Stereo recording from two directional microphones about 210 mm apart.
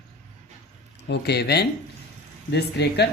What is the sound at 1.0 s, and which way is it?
Speech, 50° left (ahead or behind).